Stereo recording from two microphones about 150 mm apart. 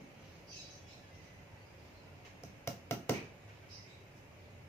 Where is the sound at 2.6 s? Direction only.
15° left (ahead or behind).